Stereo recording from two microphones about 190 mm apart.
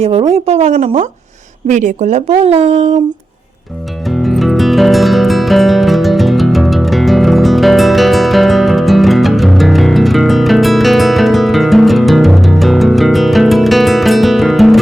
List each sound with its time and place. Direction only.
0.0 s speech: 30° right (ahead or behind)
4.2 s music: centre (ahead or behind)